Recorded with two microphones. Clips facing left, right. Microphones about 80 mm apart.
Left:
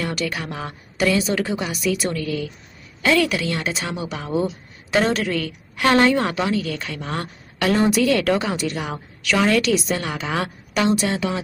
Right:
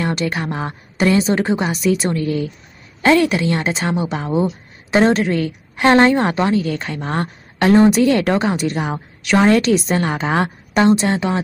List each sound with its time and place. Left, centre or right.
0.0 s a woman's voice: right